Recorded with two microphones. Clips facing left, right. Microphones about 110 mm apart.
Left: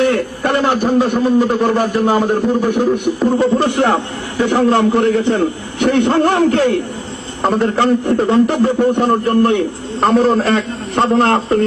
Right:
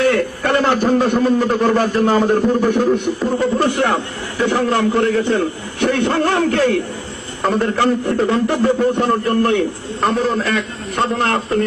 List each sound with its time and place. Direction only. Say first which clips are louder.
0.0 s a man's voice: left 1 dB; 15° left (ahead or behind)
10.1 s a man's voice: left 6 dB; 40° left (ahead or behind)